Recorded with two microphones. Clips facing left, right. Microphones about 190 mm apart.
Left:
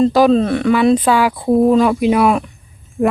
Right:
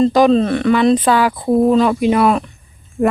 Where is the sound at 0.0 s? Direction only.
5° left (ahead or behind).